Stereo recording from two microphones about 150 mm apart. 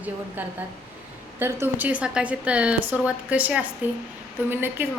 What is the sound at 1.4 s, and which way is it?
A woman's voice, 15° right (ahead or behind).